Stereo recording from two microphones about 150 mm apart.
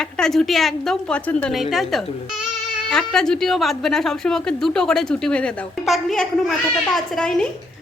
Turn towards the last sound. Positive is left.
turn(degrees=5)  # may be behind; listen again after turning